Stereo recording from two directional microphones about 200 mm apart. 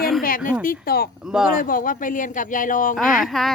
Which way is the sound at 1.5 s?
45° left (ahead or behind).